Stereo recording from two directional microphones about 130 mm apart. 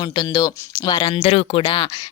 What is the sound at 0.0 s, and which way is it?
A woman's voice, 35° left (ahead or behind).